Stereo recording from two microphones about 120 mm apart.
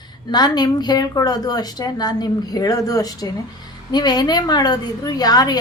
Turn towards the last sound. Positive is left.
turn(degrees=35)  # may be behind; listen again after turning